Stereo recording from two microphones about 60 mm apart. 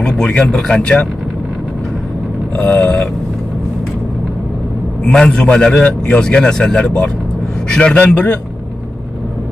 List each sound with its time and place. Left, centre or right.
0.0 s a man's voice: centre
2.5 s a man's voice: left
5.0 s a man's voice: centre